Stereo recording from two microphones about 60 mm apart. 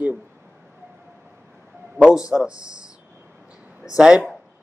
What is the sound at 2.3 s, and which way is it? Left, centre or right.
Speech, centre.